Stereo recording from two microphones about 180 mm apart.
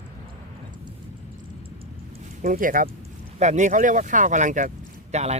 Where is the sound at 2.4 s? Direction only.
50° right (ahead or behind).